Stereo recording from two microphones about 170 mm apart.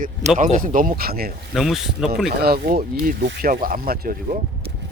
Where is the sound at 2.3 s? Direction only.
65° right (ahead or behind).